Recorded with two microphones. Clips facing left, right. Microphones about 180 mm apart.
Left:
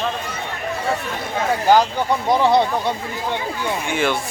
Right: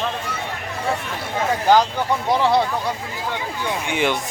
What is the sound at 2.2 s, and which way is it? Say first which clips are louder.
Speech: left 2 dB; 15° left (ahead or behind).